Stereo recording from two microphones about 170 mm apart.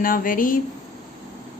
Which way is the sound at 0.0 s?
55° left (ahead or behind).